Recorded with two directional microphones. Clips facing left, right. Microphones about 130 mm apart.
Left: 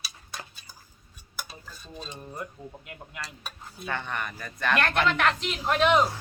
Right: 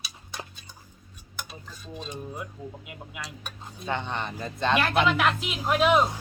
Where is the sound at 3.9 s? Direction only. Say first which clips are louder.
Right 2 dB; 20° right (ahead or behind).